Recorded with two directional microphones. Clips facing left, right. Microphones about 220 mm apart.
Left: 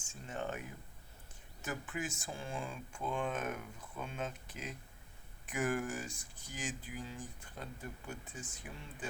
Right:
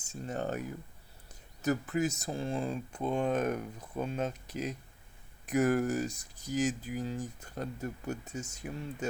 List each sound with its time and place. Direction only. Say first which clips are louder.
0.0 s speech: right 6 dB; 40° right (ahead or behind)
1.6 s speech: right 11 dB; 40° right (ahead or behind)